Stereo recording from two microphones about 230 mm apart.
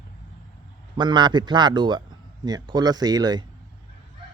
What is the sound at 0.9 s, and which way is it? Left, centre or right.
A man's voice, centre.